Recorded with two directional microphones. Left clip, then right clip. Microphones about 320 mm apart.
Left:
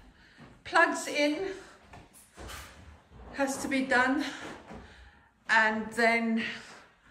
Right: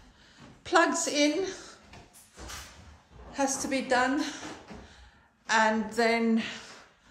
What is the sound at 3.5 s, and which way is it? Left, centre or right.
Speech, centre.